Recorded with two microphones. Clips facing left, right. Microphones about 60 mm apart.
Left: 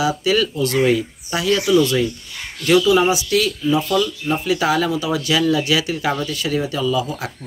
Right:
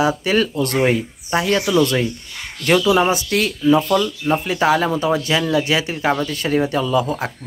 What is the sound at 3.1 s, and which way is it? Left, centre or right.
Speech, right.